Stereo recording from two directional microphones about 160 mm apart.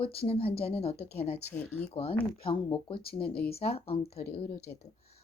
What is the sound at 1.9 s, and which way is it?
Speech, 35° left (ahead or behind).